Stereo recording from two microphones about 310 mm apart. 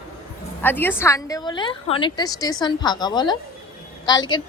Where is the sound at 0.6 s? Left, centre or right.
Centre.